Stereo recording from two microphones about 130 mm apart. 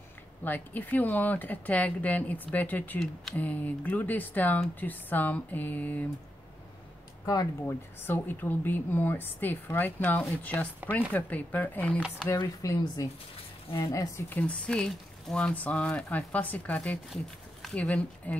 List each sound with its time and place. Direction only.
0.4 s speech: 15° left (ahead or behind)
7.6 s speech: 15° left (ahead or behind)
12.4 s speech: 25° left (ahead or behind)
14.3 s speech: 10° left (ahead or behind)